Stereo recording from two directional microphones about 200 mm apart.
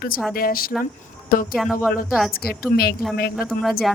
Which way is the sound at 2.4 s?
50° left (ahead or behind).